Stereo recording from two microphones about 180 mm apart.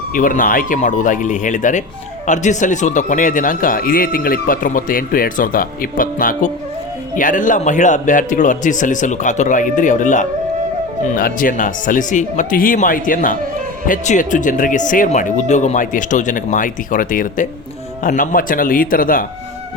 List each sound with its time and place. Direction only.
0.1 s a man's voice: 50° left (ahead or behind)